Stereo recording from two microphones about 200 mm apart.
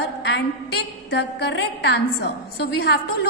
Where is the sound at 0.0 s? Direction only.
55° left (ahead or behind).